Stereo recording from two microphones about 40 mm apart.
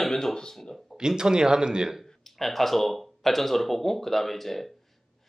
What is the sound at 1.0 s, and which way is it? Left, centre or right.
Speech, centre.